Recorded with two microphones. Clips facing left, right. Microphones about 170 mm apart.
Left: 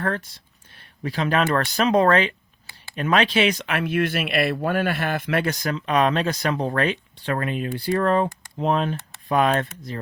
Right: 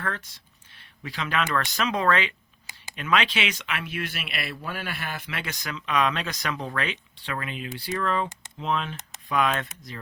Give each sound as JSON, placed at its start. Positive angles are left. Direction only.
{"t": 0.0, "sound": "speech", "side_deg": 35}
{"t": 0.8, "sound": "speech", "side_deg": 45}